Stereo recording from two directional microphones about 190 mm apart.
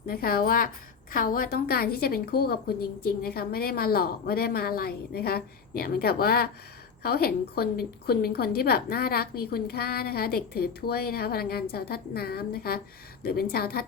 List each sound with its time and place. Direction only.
0.1 s a woman's voice: 50° left (ahead or behind)